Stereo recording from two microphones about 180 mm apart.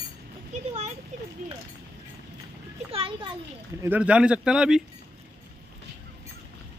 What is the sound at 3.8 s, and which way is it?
Speech, 10° right (ahead or behind).